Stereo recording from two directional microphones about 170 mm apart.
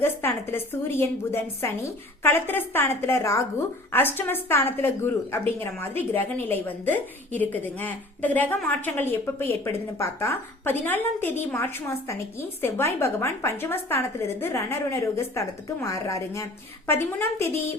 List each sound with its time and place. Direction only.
0.0 s a woman's voice: 15° left (ahead or behind)